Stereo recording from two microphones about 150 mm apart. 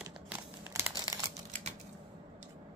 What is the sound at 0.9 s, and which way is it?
Crumpling, 30° right (ahead or behind).